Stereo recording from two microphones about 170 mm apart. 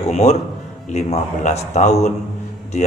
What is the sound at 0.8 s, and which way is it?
A man's voice, 40° left (ahead or behind).